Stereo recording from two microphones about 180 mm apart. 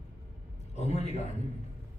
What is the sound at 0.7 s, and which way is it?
Speech, 40° left (ahead or behind).